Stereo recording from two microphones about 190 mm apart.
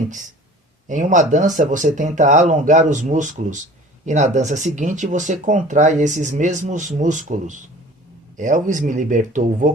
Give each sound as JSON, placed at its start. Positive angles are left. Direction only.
{"t": 0.9, "sound": "speech", "side_deg": -40}